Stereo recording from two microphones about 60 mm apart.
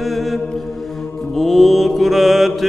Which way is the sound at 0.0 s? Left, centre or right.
Centre.